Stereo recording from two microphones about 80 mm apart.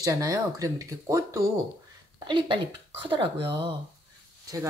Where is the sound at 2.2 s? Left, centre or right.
Right.